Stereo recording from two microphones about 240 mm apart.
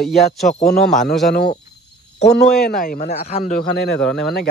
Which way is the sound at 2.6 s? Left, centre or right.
Left.